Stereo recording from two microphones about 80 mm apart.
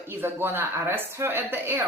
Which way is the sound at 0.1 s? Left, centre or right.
Right.